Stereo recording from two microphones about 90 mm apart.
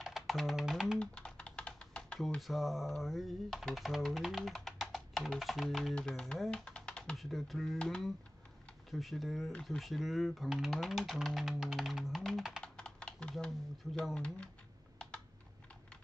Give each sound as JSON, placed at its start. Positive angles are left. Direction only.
{"t": 0.0, "sound": "speech", "side_deg": 0}
{"t": 0.9, "sound": "typing", "side_deg": 10}
{"t": 2.4, "sound": "speech", "side_deg": 0}
{"t": 6.5, "sound": "typing", "side_deg": 10}
{"t": 7.2, "sound": "speech", "side_deg": 0}
{"t": 12.6, "sound": "typing", "side_deg": 10}
{"t": 13.9, "sound": "speech", "side_deg": 10}